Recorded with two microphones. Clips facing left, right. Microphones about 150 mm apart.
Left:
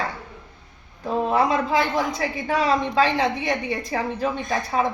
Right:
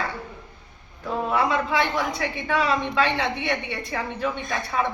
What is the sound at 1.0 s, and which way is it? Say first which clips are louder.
A woman's voice: left 3 dB; 40° left (ahead or behind).